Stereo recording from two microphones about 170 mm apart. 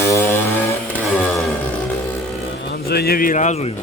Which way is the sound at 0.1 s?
15° left (ahead or behind).